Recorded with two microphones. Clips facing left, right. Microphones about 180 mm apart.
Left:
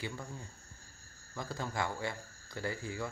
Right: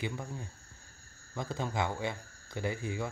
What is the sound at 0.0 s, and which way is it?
Speech, 20° right (ahead or behind).